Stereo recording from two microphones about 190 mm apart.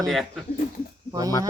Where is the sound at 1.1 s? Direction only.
20° right (ahead or behind).